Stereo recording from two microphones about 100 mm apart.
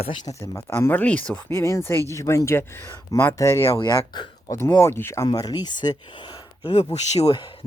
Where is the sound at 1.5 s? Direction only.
30° left (ahead or behind).